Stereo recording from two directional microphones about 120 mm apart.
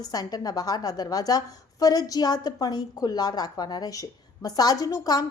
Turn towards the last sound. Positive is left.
turn(degrees=35)  # may be behind; listen again after turning